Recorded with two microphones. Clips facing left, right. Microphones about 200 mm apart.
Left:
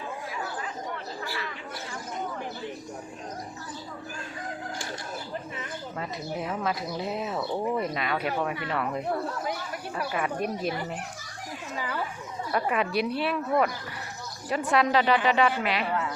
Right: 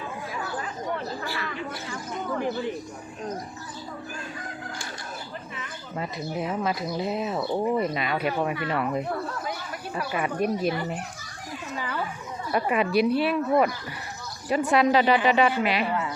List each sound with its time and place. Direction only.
1.9 s a sound: 90° right
6.0 s speech: 10° right (ahead or behind)
7.3 s speech: 10° right (ahead or behind)
10.1 s speech: 5° right (ahead or behind)
12.5 s speech: 10° right (ahead or behind)
14.5 s speech: 5° right (ahead or behind)